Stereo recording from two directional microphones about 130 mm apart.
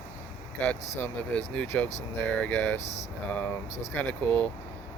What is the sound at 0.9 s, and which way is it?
Speech, 10° left (ahead or behind).